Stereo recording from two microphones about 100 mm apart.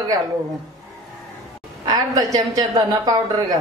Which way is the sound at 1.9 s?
35° right (ahead or behind).